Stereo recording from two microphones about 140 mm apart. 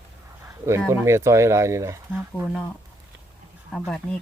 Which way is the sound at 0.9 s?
20° right (ahead or behind).